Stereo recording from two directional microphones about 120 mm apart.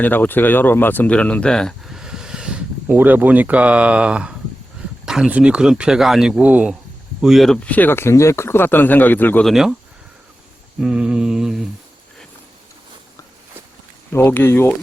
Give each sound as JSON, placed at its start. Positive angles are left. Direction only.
{"t": 0.0, "sound": "speech", "side_deg": 15}
{"t": 9.4, "sound": "speech", "side_deg": 0}
{"t": 10.8, "sound": "speech", "side_deg": -5}
{"t": 14.1, "sound": "speech", "side_deg": 20}